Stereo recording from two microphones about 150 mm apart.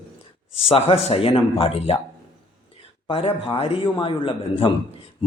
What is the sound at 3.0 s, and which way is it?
Speech, 35° left (ahead or behind).